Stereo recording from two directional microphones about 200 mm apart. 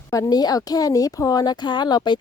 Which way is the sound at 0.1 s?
20° left (ahead or behind).